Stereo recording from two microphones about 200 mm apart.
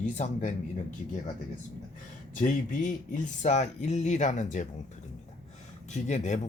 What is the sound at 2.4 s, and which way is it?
Speech, 40° left (ahead or behind).